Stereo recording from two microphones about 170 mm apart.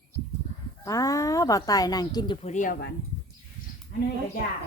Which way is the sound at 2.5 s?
50° left (ahead or behind).